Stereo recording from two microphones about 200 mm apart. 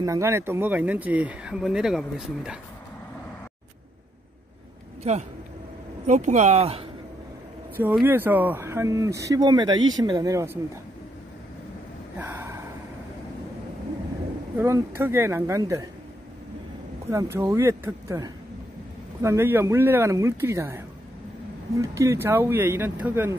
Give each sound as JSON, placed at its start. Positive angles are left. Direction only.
{"t": 0.0, "sound": "speech", "side_deg": -15}
{"t": 6.0, "sound": "speech", "side_deg": -35}
{"t": 8.0, "sound": "speech", "side_deg": -10}
{"t": 12.2, "sound": "a sound", "side_deg": -10}
{"t": 14.6, "sound": "speech", "side_deg": -10}
{"t": 17.1, "sound": "speech", "side_deg": -15}